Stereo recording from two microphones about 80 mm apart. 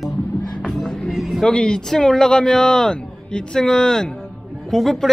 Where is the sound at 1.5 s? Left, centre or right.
Centre.